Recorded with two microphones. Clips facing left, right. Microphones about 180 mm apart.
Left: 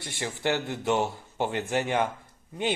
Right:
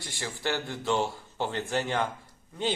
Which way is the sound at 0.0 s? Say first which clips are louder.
Left 3 dB; 20° left (ahead or behind).